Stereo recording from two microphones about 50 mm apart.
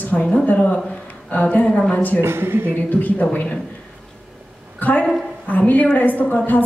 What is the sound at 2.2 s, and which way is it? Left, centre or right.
Speech, right.